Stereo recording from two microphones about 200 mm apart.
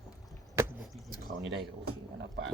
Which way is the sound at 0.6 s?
15° right (ahead or behind).